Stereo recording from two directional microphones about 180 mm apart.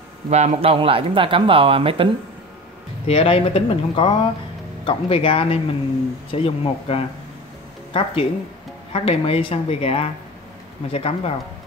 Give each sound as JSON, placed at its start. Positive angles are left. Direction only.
{"t": 0.3, "sound": "speech", "side_deg": -35}
{"t": 3.1, "sound": "a woman's voice", "side_deg": 30}